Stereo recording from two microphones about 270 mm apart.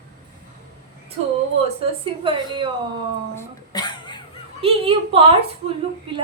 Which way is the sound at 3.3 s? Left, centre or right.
Centre.